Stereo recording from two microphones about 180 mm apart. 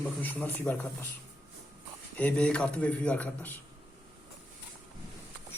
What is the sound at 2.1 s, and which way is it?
A man's voice, 5° left (ahead or behind).